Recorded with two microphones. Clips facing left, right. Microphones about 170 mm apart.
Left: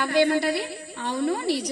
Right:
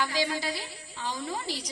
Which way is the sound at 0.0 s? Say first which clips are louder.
Left 9 dB; 60° left (ahead or behind).